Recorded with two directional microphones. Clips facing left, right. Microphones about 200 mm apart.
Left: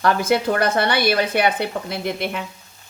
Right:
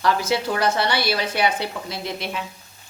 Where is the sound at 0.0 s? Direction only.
55° left (ahead or behind).